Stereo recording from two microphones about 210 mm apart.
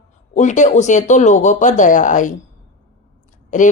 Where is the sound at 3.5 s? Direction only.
35° left (ahead or behind).